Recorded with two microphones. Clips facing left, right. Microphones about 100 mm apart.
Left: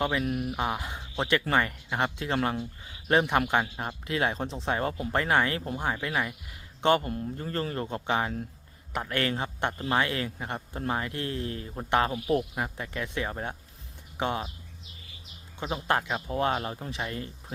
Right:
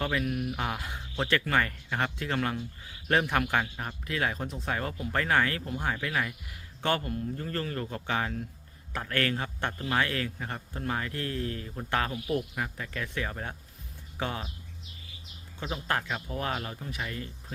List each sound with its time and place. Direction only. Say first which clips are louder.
0.0 s speech: left 2 dB; 20° left (ahead or behind)
15.6 s speech: left 3 dB; 25° left (ahead or behind)